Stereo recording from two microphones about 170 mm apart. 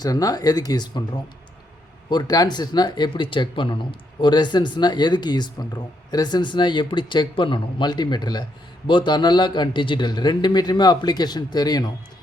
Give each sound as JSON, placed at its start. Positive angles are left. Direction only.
{"t": 0.0, "sound": "speech", "side_deg": 20}
{"t": 2.0, "sound": "speech", "side_deg": 25}